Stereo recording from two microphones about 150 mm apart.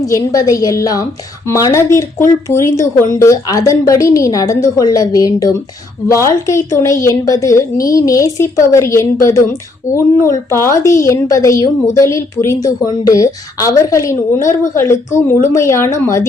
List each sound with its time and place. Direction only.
0.0 s speech: 25° left (ahead or behind)